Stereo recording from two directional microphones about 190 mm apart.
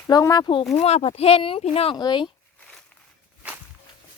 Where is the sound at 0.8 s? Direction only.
35° left (ahead or behind).